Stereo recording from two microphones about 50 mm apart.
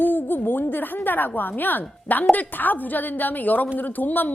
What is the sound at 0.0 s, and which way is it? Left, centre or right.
A woman's voice, left.